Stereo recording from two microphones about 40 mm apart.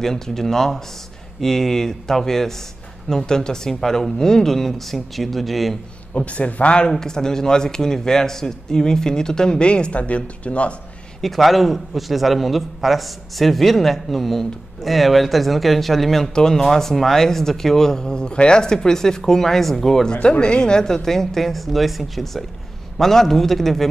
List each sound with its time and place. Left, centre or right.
0.0 s a man's voice: centre
6.1 s a man's voice: left
6.9 s a man's voice: centre; by 10.8 s left
11.1 s a man's voice: centre
20.2 s a man's voice: left; by 23.9 s centre